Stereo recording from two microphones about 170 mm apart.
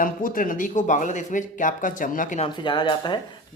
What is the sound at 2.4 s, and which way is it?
Speech, 25° left (ahead or behind).